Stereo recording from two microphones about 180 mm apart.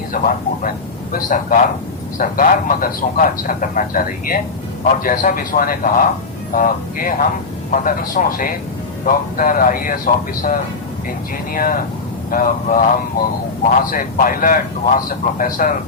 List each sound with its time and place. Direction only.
0.1 s a man's voice: 50° left (ahead or behind)
11.5 s a man's voice: 50° left (ahead or behind)